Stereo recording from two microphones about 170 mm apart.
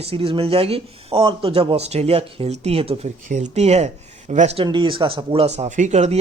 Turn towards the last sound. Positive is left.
turn(degrees=-40)  # may be behind; listen again after turning